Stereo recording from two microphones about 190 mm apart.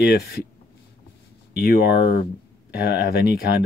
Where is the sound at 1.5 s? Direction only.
50° left (ahead or behind).